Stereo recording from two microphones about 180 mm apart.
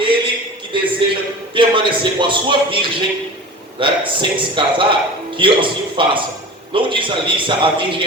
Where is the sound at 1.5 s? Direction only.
25° right (ahead or behind).